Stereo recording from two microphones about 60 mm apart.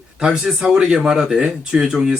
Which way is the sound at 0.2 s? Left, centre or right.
Centre.